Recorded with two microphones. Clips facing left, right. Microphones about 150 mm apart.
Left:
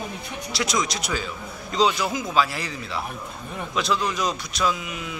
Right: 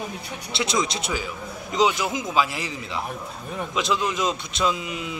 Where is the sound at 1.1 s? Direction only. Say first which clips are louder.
Even; 15° right (ahead or behind).